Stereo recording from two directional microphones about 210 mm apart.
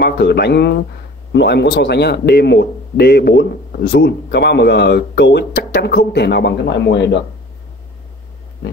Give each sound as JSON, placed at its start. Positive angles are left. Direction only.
{"t": 0.0, "sound": "a man's voice", "side_deg": 50}